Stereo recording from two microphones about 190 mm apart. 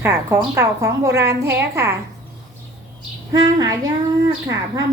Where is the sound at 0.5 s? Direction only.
15° right (ahead or behind).